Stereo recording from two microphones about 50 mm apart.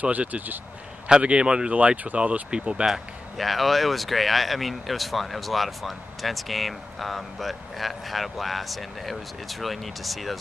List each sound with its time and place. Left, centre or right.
0.0 s speech: right
1.0 s speech: right
2.9 s speech: centre